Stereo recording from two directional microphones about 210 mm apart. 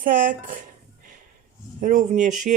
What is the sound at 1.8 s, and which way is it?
Speech, 40° right (ahead or behind).